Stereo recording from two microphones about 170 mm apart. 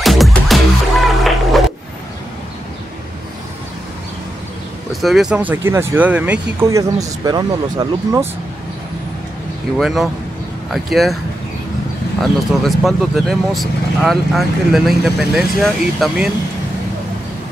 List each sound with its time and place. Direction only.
0.0 s music: centre (ahead or behind)
5.0 s speech: centre (ahead or behind)
6.7 s speech: 20° right (ahead or behind)
9.8 s speech: centre (ahead or behind)
12.2 s speech: centre (ahead or behind)